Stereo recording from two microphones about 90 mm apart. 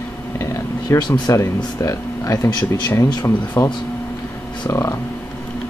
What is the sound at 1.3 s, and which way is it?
Speech, 35° left (ahead or behind).